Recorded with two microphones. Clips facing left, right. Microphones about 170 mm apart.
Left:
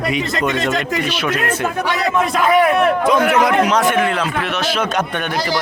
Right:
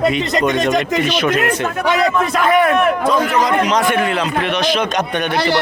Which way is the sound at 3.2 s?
60° left (ahead or behind).